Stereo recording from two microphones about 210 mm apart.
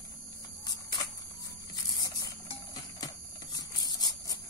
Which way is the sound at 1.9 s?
15° left (ahead or behind).